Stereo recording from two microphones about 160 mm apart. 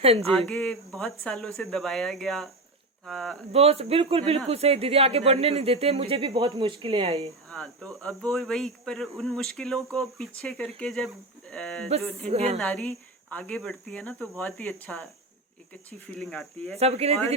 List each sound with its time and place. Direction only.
0.3 s speech: 5° left (ahead or behind)
3.5 s speech: 40° right (ahead or behind)
7.5 s speech: 5° left (ahead or behind)
12.3 s speech: 40° right (ahead or behind)
12.5 s speech: 5° left (ahead or behind)
16.7 s speech: 40° right (ahead or behind)